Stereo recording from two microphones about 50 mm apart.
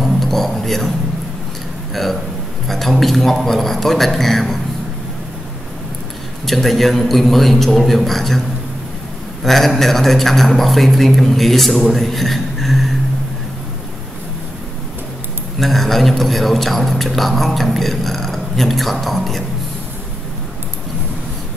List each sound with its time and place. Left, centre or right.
0.0 s speech: centre
2.0 s a man's voice: centre
6.4 s a man's voice: centre
9.4 s a man's voice: centre
15.6 s a man's voice: centre